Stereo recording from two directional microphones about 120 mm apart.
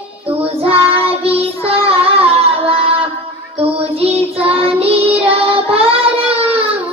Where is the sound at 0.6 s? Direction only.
55° right (ahead or behind).